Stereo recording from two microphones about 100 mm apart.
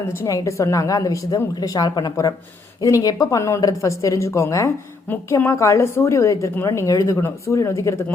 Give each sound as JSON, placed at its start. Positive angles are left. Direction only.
{"t": 0.1, "sound": "a woman's voice", "side_deg": 30}